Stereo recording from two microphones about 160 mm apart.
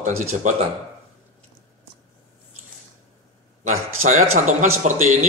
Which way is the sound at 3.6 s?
50° right (ahead or behind).